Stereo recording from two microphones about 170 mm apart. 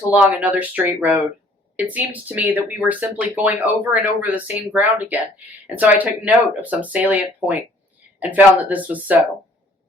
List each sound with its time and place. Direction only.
0.2 s speech: 10° right (ahead or behind)